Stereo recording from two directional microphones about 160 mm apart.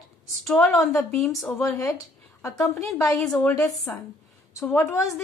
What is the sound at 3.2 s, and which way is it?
Speech, 5° left (ahead or behind).